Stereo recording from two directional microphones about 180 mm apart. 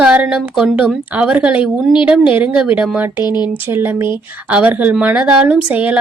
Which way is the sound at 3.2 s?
25° left (ahead or behind).